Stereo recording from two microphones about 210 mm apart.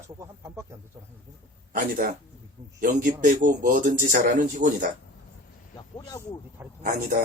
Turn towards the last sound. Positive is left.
turn(degrees=-45)  # may be behind; listen again after turning